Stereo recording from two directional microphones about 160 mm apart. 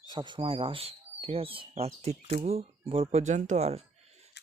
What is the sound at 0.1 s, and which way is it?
Speech, 30° right (ahead or behind).